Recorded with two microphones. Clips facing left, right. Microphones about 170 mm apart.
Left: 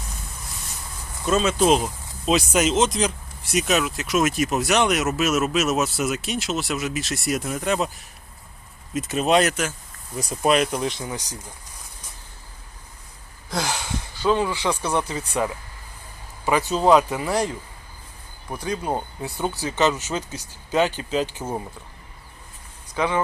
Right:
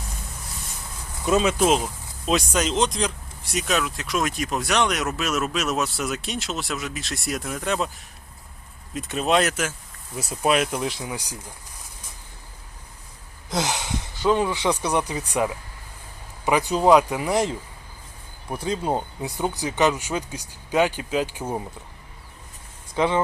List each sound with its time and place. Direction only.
1.2 s speech: 15° right (ahead or behind)
1.6 s speech: centre (ahead or behind)
8.9 s speech: 5° left (ahead or behind)
13.5 s speech: 20° right (ahead or behind)
18.6 s speech: 25° right (ahead or behind)
23.0 s speech: 20° right (ahead or behind)